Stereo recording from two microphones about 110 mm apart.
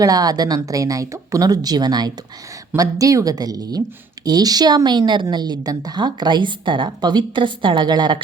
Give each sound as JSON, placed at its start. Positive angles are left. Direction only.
{"t": 0.0, "sound": "speech", "side_deg": -35}